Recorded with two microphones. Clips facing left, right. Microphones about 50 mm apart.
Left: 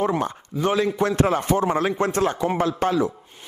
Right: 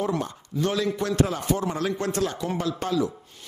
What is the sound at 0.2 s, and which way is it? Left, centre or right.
Speech, left.